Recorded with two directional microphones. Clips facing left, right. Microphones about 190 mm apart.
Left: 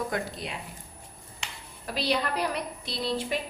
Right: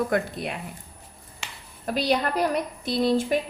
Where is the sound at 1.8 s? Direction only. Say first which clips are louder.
Right 5 dB; 45° right (ahead or behind).